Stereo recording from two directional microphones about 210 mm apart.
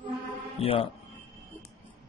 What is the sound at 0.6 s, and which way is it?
Speech, 25° left (ahead or behind).